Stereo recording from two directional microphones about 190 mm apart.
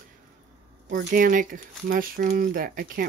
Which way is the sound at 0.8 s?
50° right (ahead or behind).